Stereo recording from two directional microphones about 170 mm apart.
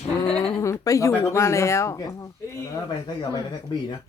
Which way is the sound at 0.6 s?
20° left (ahead or behind).